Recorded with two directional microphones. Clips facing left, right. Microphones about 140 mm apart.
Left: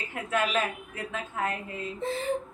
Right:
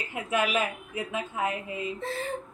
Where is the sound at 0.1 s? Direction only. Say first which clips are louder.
Right 1 dB; 15° right (ahead or behind).